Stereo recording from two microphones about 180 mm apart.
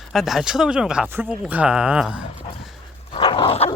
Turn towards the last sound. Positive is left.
turn(degrees=30)  # may be behind; listen again after turning